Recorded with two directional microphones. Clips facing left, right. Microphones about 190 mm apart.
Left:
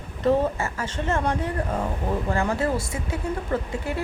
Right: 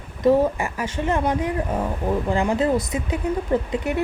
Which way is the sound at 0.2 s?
10° right (ahead or behind).